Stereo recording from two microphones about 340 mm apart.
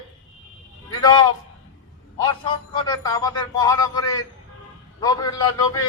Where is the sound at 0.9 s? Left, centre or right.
Centre.